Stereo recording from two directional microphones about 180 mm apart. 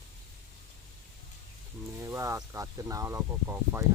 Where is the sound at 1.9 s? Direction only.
15° right (ahead or behind).